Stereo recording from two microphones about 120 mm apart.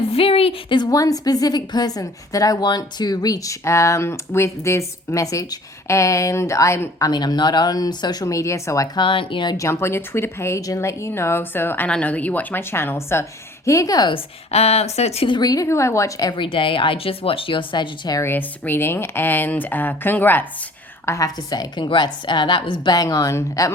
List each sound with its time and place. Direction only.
0.1 s a woman's voice: 50° left (ahead or behind)
0.8 s a woman's voice: 30° left (ahead or behind)
7.1 s a woman's voice: 35° left (ahead or behind)
9.0 s a woman's voice: 45° left (ahead or behind)
9.6 s a woman's voice: 25° left (ahead or behind)
14.1 s speech: 60° left (ahead or behind)
15.3 s a woman's voice: 35° left (ahead or behind)
16.4 s speech: 45° left (ahead or behind)
18.2 s speech: 15° left (ahead or behind)
21.1 s a woman's voice: 30° left (ahead or behind)